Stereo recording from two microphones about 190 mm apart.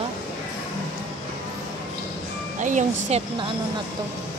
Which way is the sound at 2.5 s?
40° right (ahead or behind).